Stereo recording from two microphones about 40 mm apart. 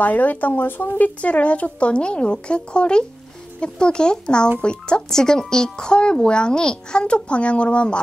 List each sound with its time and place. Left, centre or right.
0.0 s a child's voice: left
5.1 s a child's voice: centre